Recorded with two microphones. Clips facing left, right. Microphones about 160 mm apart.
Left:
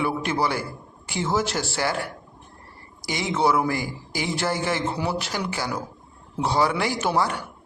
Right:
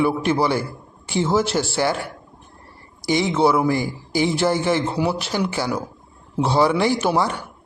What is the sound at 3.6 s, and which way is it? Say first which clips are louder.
A man's voice: right 5 dB; 20° right (ahead or behind).